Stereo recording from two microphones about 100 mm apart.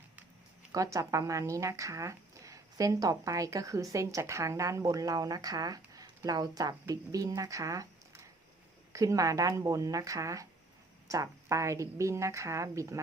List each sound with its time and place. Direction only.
0.7 s speech: 35° right (ahead or behind)